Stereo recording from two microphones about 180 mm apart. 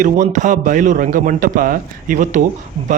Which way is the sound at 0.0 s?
45° right (ahead or behind).